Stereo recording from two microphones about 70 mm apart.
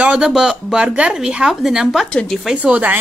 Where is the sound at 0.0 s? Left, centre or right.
Centre.